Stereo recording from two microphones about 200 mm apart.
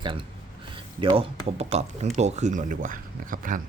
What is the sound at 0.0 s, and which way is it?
Speech, 25° right (ahead or behind).